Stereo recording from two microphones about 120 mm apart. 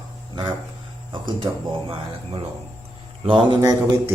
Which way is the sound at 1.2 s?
45° right (ahead or behind).